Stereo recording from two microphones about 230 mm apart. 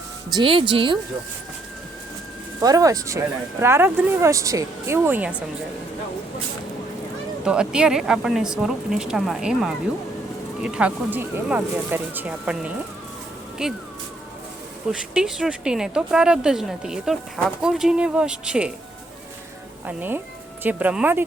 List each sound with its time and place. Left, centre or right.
0.3 s speech: right
2.6 s speech: centre
7.4 s speech: centre
15.1 s speech: centre
19.8 s speech: centre